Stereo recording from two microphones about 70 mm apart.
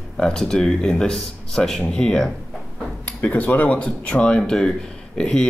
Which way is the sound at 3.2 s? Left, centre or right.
Left.